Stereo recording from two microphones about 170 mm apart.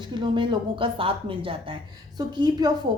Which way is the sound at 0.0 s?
25° right (ahead or behind).